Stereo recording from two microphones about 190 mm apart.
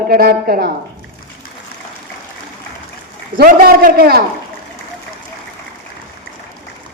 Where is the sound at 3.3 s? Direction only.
50° right (ahead or behind).